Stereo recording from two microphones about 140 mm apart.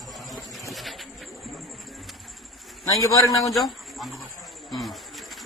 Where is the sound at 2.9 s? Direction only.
25° left (ahead or behind).